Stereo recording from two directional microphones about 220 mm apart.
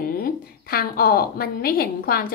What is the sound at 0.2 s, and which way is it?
A woman's voice, 45° left (ahead or behind).